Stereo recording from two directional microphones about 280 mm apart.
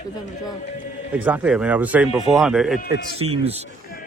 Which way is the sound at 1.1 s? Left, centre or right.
Centre.